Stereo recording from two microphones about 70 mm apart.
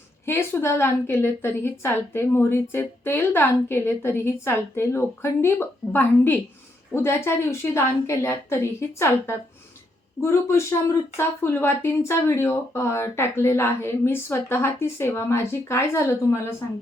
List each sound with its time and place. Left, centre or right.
0.3 s a woman's voice: left
10.2 s a woman's voice: left